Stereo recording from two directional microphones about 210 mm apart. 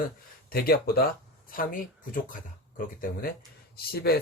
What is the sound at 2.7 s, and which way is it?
Speech, 40° left (ahead or behind).